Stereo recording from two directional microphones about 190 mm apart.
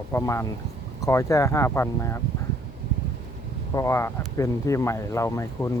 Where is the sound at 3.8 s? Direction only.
15° left (ahead or behind).